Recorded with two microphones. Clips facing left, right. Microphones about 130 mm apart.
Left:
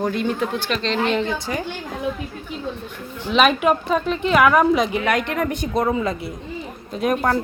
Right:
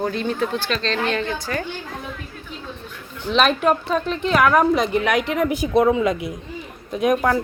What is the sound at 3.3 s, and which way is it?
A woman's voice, 5° left (ahead or behind).